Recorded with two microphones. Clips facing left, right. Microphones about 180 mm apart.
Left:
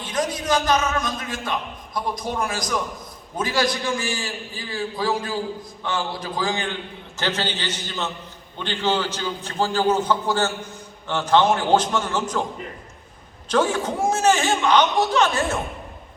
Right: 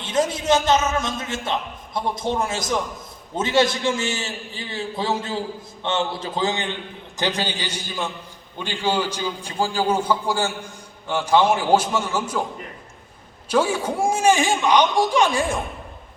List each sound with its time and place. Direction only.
0.0 s a man's voice: 25° right (ahead or behind)